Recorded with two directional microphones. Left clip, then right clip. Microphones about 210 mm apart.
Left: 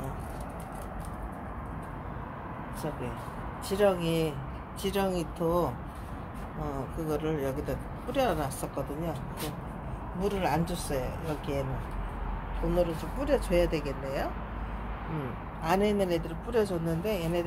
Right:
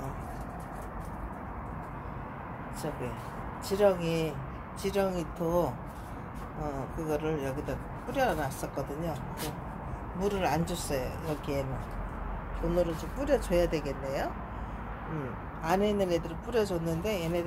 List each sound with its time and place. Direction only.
3.7 s speech: 5° left (ahead or behind)
7.0 s speech: 5° left (ahead or behind)
10.1 s speech: centre (ahead or behind)
12.6 s speech: centre (ahead or behind)
15.6 s speech: 10° left (ahead or behind)